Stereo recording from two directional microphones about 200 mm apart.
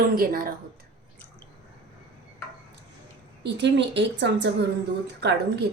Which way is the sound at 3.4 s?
60° right (ahead or behind).